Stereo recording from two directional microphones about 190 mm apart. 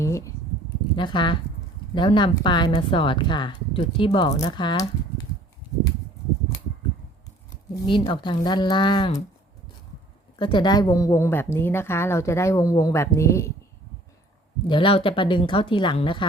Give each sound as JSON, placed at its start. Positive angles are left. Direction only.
{"t": 0.0, "sound": "a sound", "side_deg": 15}
{"t": 0.9, "sound": "speech", "side_deg": 25}
{"t": 7.7, "sound": "speech", "side_deg": 25}
{"t": 10.3, "sound": "a woman's voice", "side_deg": 25}
{"t": 14.7, "sound": "speech", "side_deg": 25}